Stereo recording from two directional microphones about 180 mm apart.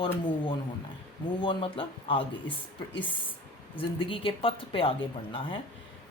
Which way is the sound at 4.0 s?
30° left (ahead or behind).